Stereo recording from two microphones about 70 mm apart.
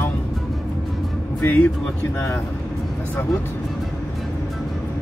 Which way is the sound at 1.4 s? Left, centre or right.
Left.